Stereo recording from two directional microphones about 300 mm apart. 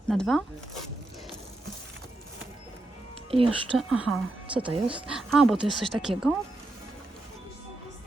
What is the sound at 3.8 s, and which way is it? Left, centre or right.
Speech, centre.